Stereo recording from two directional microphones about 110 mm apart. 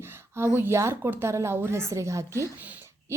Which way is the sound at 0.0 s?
20° right (ahead or behind).